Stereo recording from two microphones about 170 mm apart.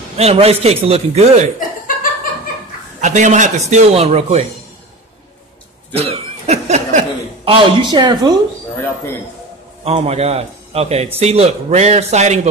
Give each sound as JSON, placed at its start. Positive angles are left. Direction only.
{"t": 0.2, "sound": "a man's voice", "side_deg": -35}
{"t": 3.0, "sound": "speech", "side_deg": -45}
{"t": 5.9, "sound": "a sound", "side_deg": -35}
{"t": 7.4, "sound": "speech", "side_deg": -30}
{"t": 9.8, "sound": "a man's voice", "side_deg": -35}